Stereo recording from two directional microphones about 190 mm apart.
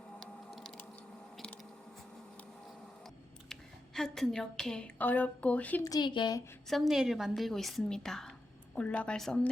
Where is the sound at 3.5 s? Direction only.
Centre (ahead or behind).